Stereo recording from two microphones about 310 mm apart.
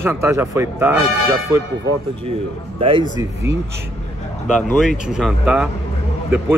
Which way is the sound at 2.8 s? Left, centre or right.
Centre.